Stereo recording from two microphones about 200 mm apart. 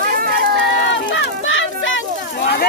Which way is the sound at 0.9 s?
70° left (ahead or behind).